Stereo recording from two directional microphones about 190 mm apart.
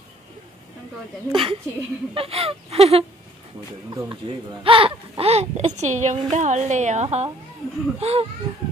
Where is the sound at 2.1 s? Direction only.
30° right (ahead or behind).